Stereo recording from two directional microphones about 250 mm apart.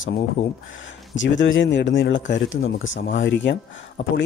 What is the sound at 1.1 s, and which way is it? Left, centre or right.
Speech, left.